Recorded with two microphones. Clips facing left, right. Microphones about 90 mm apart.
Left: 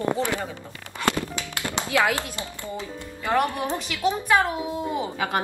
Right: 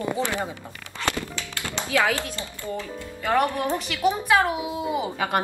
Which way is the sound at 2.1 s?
15° left (ahead or behind).